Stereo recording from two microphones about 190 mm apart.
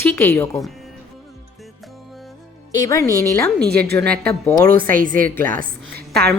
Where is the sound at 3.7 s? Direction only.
55° right (ahead or behind).